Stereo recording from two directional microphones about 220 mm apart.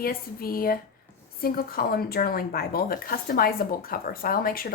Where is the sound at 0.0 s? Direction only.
40° left (ahead or behind).